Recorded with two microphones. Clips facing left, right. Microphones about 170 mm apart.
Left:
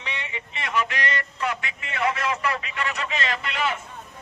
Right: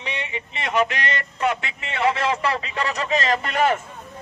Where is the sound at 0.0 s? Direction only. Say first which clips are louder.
Right 4 dB; 20° right (ahead or behind).